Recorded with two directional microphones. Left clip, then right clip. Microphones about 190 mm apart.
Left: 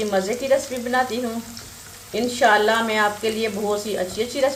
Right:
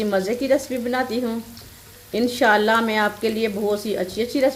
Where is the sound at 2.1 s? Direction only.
50° right (ahead or behind).